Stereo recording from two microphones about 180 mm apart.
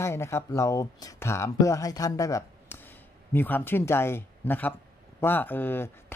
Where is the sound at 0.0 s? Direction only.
15° left (ahead or behind).